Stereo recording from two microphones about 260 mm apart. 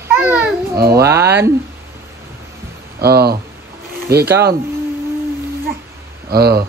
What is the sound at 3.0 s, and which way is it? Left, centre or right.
Speech, right.